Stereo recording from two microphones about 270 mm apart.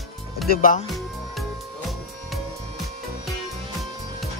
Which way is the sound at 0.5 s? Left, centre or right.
Left.